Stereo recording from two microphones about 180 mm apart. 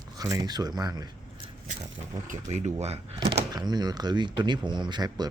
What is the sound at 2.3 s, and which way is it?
Speech, 40° right (ahead or behind).